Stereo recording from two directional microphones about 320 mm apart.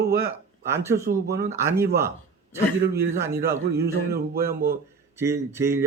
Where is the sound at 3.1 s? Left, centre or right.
Centre.